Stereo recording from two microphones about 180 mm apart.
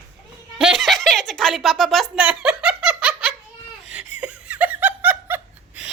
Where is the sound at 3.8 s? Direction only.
5° right (ahead or behind).